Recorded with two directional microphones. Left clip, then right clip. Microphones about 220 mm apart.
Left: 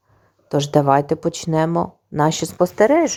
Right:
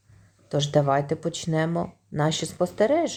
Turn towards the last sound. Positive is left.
turn(degrees=30)  # may be behind; listen again after turning